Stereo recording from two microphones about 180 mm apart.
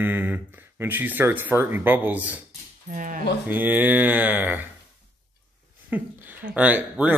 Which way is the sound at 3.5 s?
10° right (ahead or behind).